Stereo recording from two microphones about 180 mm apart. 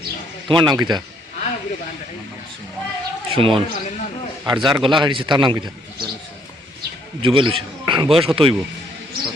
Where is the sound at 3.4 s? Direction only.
30° right (ahead or behind).